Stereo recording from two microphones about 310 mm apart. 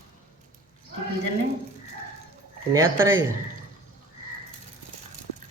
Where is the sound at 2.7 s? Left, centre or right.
Centre.